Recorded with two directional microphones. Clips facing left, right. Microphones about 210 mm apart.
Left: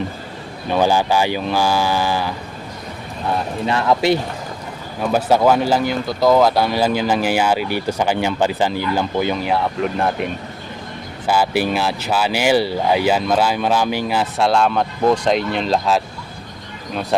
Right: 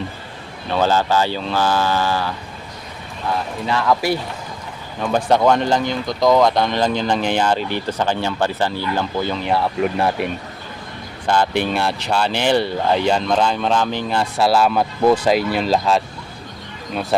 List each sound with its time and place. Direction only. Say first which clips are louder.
0.7 s speech: left 1 dB; 15° left (ahead or behind)
3.7 s speech: left 2 dB; 25° left (ahead or behind)
4.9 s speech: left 1 dB; 5° left (ahead or behind)
9.5 s speech: right 1 dB; 5° right (ahead or behind)
11.3 s speech: left 1 dB; 5° left (ahead or behind)